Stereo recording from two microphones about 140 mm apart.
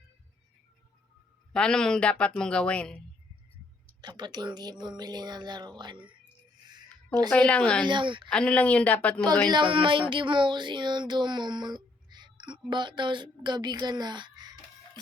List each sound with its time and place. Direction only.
1.5 s speech: 5° left (ahead or behind)
4.0 s a woman's voice: 30° right (ahead or behind)
6.7 s a sound: 30° right (ahead or behind)
7.3 s speech: 10° left (ahead or behind)
7.9 s a woman's voice: 35° right (ahead or behind)
8.3 s speech: 5° left (ahead or behind)
9.2 s a woman's voice: 30° right (ahead or behind)